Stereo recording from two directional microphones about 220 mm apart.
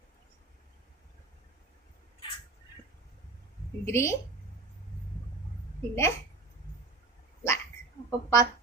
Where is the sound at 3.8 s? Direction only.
10° left (ahead or behind).